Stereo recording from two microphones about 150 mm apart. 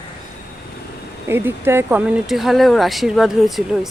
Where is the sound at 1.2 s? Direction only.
15° right (ahead or behind).